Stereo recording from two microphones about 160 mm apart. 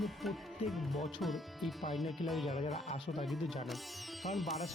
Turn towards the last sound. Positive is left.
turn(degrees=0)  # may be behind; listen again after turning